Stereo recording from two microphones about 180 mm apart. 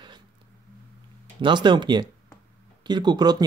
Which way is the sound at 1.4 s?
25° right (ahead or behind).